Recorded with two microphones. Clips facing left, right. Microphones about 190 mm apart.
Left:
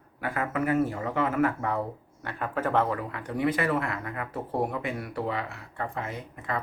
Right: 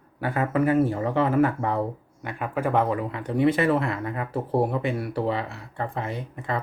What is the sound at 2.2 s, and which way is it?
Speech, 15° right (ahead or behind).